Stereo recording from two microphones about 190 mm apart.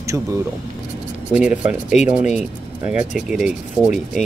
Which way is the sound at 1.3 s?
5° right (ahead or behind).